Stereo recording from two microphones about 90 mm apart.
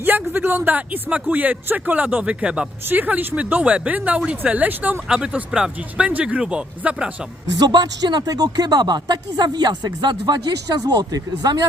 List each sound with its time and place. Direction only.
0.0 s speech: 25° right (ahead or behind)
7.6 s speech: 50° right (ahead or behind)